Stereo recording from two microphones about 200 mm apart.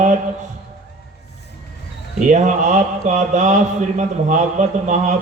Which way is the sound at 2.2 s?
40° right (ahead or behind).